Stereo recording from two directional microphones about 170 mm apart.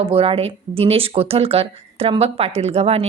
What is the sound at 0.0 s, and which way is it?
A woman's voice, 35° right (ahead or behind).